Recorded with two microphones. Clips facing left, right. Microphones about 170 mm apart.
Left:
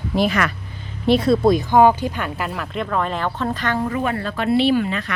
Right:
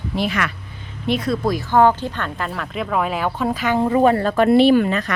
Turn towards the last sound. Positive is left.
turn(degrees=-45)  # may be behind; listen again after turning